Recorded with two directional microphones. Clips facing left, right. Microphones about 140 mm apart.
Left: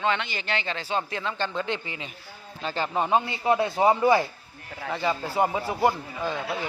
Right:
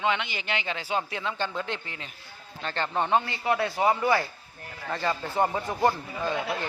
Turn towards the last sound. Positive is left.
turn(degrees=0)  # may be behind; listen again after turning